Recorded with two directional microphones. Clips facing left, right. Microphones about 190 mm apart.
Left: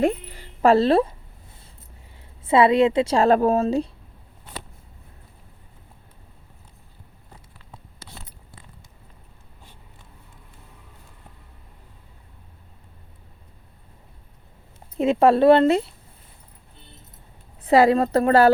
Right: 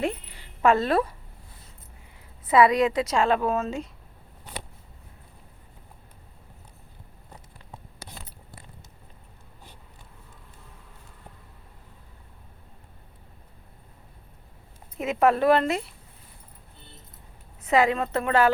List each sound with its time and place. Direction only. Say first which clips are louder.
0.0 s a sound: left 7 dB; 40° left (ahead or behind); by 1.1 s 25° left (ahead or behind)
2.4 s a woman's voice: left 3 dB; 25° left (ahead or behind)
14.9 s speech: left 5 dB; 30° left (ahead or behind)
17.6 s a woman's voice: left 6 dB; 35° left (ahead or behind)